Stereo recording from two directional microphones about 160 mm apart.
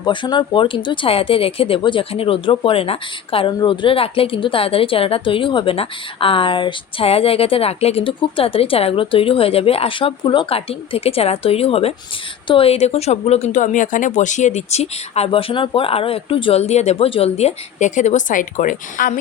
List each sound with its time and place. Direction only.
0.0 s speech: 30° left (ahead or behind); by 19.1 s 55° left (ahead or behind)